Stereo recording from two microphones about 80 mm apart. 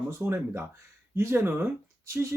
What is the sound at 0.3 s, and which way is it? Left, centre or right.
Speech, right.